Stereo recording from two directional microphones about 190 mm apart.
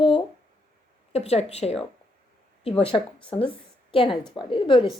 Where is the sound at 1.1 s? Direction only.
35° left (ahead or behind).